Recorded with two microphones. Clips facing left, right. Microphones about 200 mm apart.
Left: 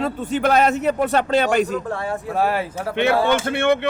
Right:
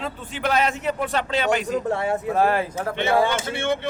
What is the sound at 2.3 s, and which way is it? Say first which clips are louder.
Speech: left 1 dB; 5° left (ahead or behind).